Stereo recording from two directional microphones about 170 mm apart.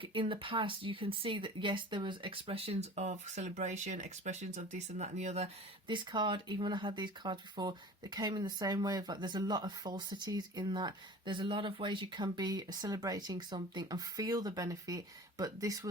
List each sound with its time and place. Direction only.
0.0 s speech: 30° right (ahead or behind)
5.9 s speech: 25° right (ahead or behind)